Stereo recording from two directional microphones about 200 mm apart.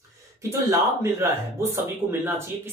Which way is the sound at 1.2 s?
10° right (ahead or behind).